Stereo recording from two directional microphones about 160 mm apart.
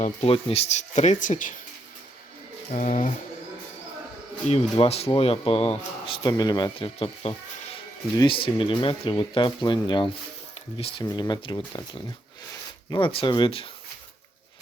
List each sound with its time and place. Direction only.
0.0 s speech: 40° left (ahead or behind); by 1.5 s 55° left (ahead or behind)
2.7 s speech: 55° left (ahead or behind)
4.4 s speech: 40° left (ahead or behind)
6.2 s speech: 25° left (ahead or behind)
11.1 s speech: 25° left (ahead or behind)
12.9 s speech: 35° left (ahead or behind)